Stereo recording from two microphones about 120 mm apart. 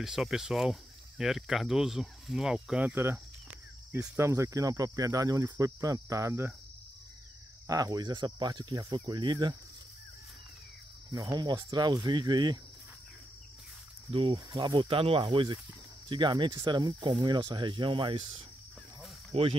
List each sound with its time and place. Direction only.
0.0 s speech: 5° right (ahead or behind)
2.9 s cricket: 20° right (ahead or behind)
4.2 s cricket: 25° right (ahead or behind)
7.6 s speech: 30° right (ahead or behind)
11.3 s speech: 35° right (ahead or behind)
14.1 s speech: 50° right (ahead or behind)
14.5 s speech: 35° right (ahead or behind)
14.9 s speech: 50° right (ahead or behind)
19.3 s speech: 65° right (ahead or behind)